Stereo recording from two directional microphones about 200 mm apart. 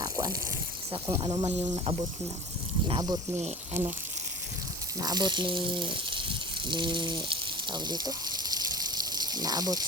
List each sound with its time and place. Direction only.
0.0 s a sound: 15° right (ahead or behind)
1.0 s speech: 20° right (ahead or behind)
4.9 s speech: 20° right (ahead or behind)
8.5 s water: 20° right (ahead or behind)